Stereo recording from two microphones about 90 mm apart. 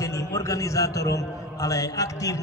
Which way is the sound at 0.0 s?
35° left (ahead or behind).